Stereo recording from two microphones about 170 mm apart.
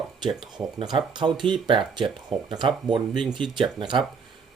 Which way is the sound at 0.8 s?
30° right (ahead or behind).